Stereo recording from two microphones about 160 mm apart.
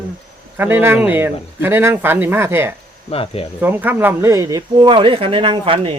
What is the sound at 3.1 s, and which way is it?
Speech, 35° left (ahead or behind).